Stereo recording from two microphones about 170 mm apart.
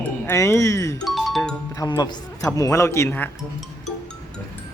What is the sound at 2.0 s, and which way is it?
Speech, 25° left (ahead or behind).